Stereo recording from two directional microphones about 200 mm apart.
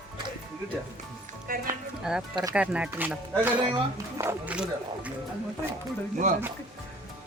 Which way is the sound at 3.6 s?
25° right (ahead or behind).